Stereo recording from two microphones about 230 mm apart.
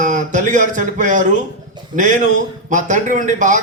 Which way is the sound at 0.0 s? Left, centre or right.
Right.